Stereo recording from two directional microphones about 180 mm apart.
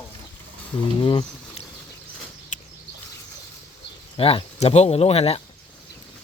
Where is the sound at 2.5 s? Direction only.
40° left (ahead or behind).